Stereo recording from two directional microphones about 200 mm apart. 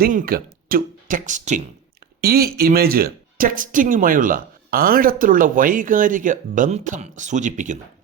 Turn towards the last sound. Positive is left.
turn(degrees=-40)  # may be behind; listen again after turning